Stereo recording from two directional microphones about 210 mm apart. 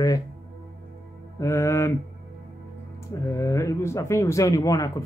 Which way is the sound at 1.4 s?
15° left (ahead or behind).